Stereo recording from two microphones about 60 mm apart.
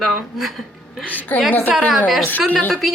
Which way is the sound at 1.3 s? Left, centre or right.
Left.